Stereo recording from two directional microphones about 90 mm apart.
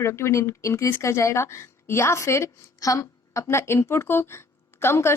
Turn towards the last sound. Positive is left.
turn(degrees=25)  # may be behind; listen again after turning